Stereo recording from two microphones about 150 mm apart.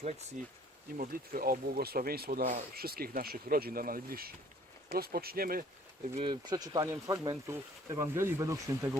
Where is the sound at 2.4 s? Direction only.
60° right (ahead or behind); by 4.3 s 75° right (ahead or behind).